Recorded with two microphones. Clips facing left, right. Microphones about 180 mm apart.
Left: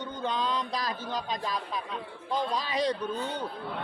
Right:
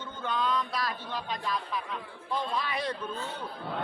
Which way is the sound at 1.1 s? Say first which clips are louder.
Left 1 dB; 40° left (ahead or behind).